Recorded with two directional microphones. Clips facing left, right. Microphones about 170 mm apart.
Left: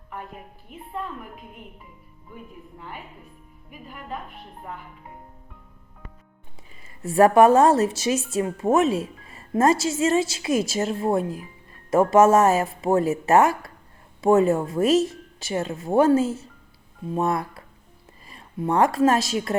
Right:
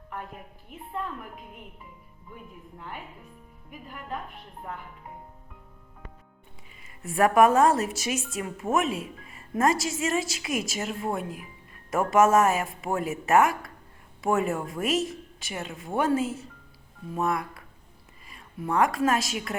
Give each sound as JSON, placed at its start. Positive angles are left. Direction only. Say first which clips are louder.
{"t": 0.7, "sound": "a woman's voice", "louder": "left 1 dB", "side_deg": 5}
{"t": 2.7, "sound": "a woman's voice", "louder": "left 1 dB", "side_deg": 5}
{"t": 6.8, "sound": "a woman's voice", "louder": "left 6 dB", "side_deg": 30}